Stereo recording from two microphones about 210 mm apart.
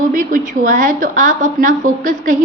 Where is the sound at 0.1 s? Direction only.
40° right (ahead or behind).